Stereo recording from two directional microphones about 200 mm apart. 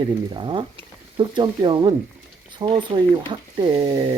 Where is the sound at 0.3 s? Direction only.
25° right (ahead or behind).